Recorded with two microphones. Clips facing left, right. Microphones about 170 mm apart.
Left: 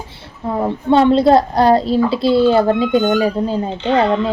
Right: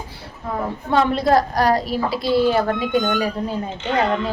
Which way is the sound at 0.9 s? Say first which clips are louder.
Left 7 dB; 30° left (ahead or behind).